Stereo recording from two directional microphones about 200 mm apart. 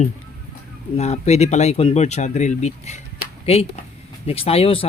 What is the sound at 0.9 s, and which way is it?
Speech, 35° left (ahead or behind).